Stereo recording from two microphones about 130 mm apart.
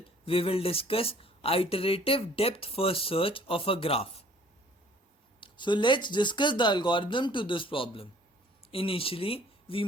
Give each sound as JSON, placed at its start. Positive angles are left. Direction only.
{"t": 0.3, "sound": "speech", "side_deg": 45}
{"t": 5.4, "sound": "speech", "side_deg": 35}